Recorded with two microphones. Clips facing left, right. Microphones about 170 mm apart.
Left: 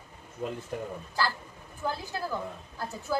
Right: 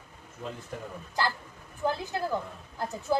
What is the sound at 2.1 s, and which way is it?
A woman's voice, 20° right (ahead or behind).